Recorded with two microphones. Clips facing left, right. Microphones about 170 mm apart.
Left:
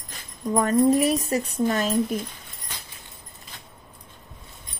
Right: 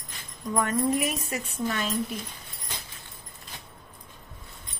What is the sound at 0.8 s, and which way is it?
Speech, 35° left (ahead or behind).